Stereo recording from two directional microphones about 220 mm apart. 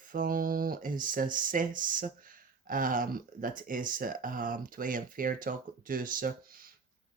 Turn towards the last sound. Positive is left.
turn(degrees=-40)  # may be behind; listen again after turning